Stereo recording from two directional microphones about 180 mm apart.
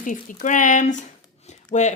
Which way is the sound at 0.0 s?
45° left (ahead or behind).